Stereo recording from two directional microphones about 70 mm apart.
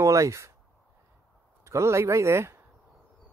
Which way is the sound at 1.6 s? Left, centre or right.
Right.